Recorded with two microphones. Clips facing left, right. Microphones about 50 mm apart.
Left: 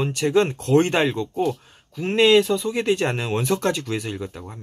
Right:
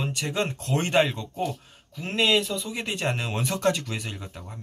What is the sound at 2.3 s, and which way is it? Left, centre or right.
Speech, centre.